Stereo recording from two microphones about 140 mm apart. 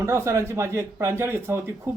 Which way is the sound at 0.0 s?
20° right (ahead or behind).